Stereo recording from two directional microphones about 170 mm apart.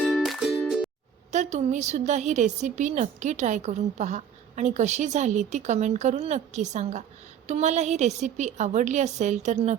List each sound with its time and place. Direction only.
0.0 s music: centre (ahead or behind)
1.3 s a woman's voice: 45° right (ahead or behind)